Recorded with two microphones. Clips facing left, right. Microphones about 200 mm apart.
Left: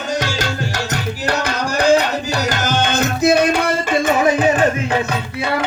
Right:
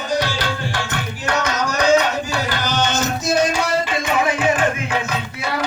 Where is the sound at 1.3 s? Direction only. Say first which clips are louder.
Even; 35° left (ahead or behind); by 3.7 s 60° left (ahead or behind).